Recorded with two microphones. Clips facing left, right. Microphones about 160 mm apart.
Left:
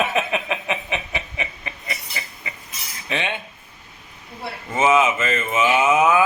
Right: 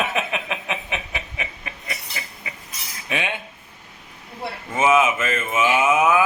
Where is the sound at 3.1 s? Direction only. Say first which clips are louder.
Left 1 dB; 10° right (ahead or behind).